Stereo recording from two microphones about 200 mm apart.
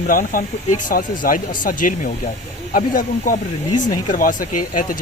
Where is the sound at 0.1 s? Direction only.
45° left (ahead or behind).